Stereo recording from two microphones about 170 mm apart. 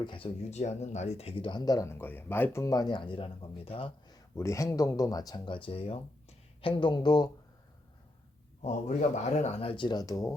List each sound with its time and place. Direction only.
0.0 s speech: 30° left (ahead or behind)
0.5 s speech: 40° left (ahead or behind)
4.4 s speech: 15° left (ahead or behind)
8.6 s speech: 45° left (ahead or behind); by 10.3 s 20° left (ahead or behind)